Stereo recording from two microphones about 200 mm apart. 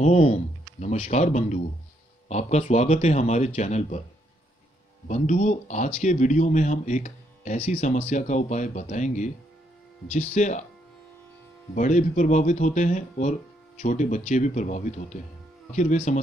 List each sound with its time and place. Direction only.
0.0 s speech: 30° left (ahead or behind)
5.0 s speech: 35° left (ahead or behind)
11.7 s speech: 40° left (ahead or behind)